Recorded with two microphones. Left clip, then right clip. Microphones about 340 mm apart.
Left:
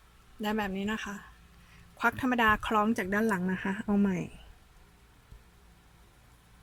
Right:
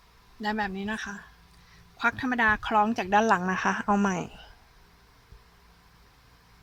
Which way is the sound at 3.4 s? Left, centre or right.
Right.